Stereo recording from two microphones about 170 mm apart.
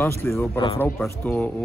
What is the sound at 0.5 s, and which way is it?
Speech, 30° left (ahead or behind).